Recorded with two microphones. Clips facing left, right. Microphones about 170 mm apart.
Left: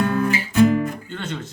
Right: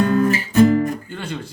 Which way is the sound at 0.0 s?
40° right (ahead or behind).